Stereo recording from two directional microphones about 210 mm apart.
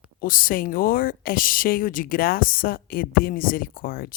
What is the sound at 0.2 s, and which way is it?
A woman's voice, 40° left (ahead or behind).